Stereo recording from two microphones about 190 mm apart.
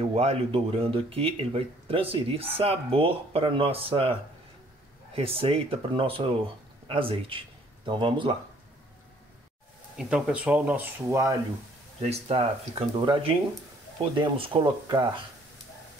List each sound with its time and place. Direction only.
0.1 s speech: 30° right (ahead or behind)
9.9 s speech: 5° right (ahead or behind)
12.0 s speech: 30° right (ahead or behind)